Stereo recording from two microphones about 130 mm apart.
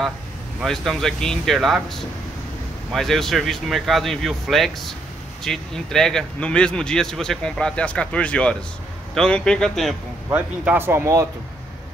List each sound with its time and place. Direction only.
0.6 s speech: centre (ahead or behind)
10.3 s speech: 15° right (ahead or behind)